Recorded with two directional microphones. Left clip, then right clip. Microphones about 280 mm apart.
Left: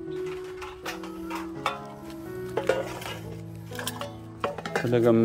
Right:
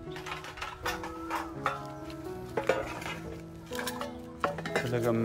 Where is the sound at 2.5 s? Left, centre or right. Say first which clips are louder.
Left 3 dB; left.